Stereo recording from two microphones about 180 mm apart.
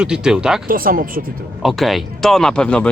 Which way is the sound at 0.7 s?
50° right (ahead or behind).